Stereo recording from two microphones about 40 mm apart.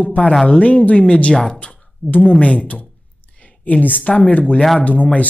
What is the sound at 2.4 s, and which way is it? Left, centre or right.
Speech, left.